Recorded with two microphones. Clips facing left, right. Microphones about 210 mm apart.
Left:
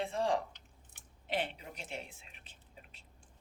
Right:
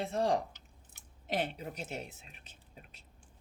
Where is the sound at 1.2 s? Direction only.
45° right (ahead or behind).